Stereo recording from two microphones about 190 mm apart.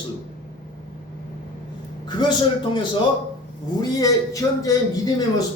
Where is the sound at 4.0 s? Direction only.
20° left (ahead or behind).